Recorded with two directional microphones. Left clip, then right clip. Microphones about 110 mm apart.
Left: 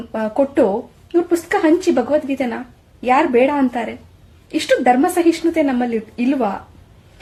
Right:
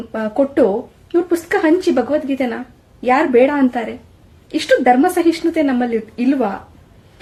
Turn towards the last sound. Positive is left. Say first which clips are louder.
# right 1 dB
turn(degrees=-30)  # may be behind; listen again after turning